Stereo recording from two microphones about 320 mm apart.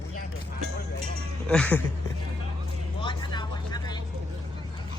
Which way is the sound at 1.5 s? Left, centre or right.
Centre.